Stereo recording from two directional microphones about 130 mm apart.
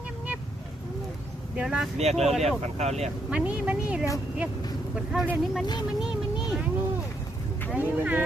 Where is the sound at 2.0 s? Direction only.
55° right (ahead or behind).